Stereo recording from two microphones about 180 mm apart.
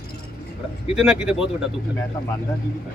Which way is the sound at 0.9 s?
5° right (ahead or behind).